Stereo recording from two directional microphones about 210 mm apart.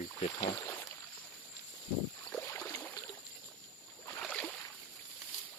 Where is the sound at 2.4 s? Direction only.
10° left (ahead or behind).